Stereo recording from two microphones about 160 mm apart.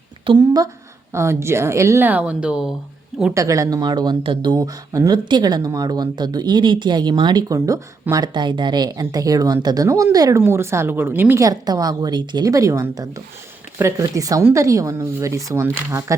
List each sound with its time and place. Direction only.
0.3 s speech: 25° right (ahead or behind); by 2.7 s 5° right (ahead or behind)
3.3 s speech: 20° right (ahead or behind)